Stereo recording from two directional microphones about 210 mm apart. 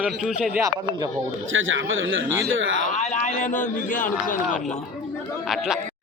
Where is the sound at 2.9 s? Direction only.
30° left (ahead or behind).